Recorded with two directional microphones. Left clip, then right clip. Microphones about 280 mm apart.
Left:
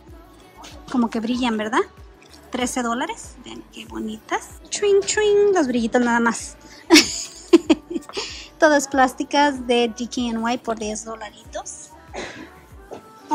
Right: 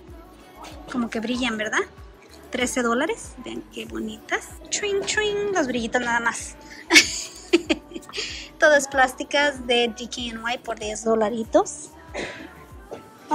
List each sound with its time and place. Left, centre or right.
1.0 s a woman's voice: centre